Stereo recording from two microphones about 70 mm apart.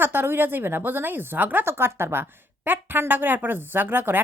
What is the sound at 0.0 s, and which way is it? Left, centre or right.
A woman's voice, right.